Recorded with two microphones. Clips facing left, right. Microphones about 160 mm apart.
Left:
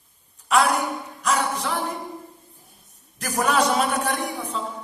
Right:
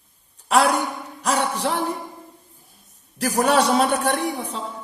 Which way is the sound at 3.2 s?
35° right (ahead or behind).